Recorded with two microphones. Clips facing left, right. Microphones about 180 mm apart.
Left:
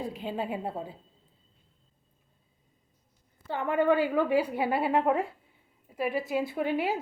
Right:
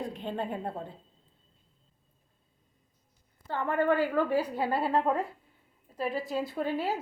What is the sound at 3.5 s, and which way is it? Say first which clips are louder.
A woman's voice: left 2 dB; 15° left (ahead or behind).